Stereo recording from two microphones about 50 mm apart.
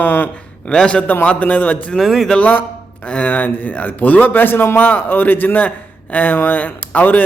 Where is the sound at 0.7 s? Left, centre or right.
Left.